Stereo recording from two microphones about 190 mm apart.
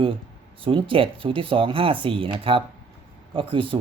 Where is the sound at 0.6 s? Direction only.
25° right (ahead or behind).